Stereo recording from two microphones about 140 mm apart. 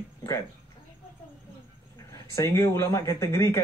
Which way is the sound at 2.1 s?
25° left (ahead or behind).